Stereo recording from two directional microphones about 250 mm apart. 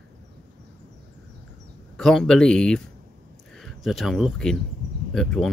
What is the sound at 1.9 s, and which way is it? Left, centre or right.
Speech, centre.